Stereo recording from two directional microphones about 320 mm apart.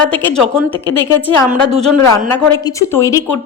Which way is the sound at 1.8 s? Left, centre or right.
Centre.